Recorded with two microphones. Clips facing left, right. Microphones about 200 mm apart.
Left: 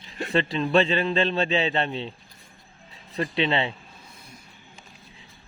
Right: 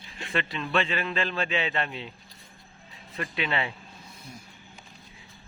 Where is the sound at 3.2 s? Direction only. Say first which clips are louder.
Left 6 dB; 30° left (ahead or behind).